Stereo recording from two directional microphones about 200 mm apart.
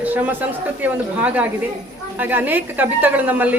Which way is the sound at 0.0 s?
10° right (ahead or behind).